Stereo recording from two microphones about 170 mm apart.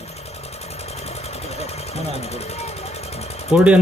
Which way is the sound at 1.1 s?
40° left (ahead or behind).